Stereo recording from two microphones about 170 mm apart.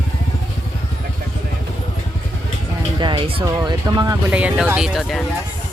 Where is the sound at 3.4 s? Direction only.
20° right (ahead or behind).